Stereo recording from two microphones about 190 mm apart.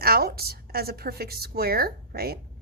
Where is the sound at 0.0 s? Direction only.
55° right (ahead or behind).